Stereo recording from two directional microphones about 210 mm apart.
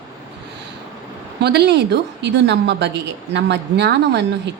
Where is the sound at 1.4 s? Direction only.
50° right (ahead or behind).